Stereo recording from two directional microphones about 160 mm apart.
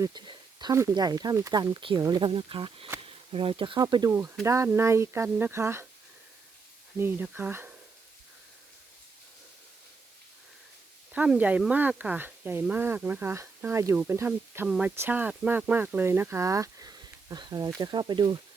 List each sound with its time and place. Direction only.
0.0 s speech: 25° right (ahead or behind)
7.0 s speech: 10° right (ahead or behind)
11.1 s speech: 10° right (ahead or behind); by 18.3 s 30° right (ahead or behind)